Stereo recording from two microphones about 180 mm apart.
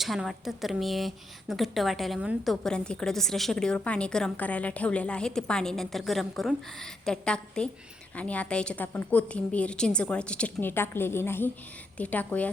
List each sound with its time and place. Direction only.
0.0 s a woman's voice: centre (ahead or behind)